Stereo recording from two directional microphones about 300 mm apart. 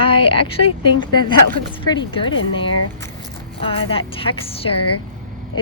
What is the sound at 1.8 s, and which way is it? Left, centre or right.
Speech, centre.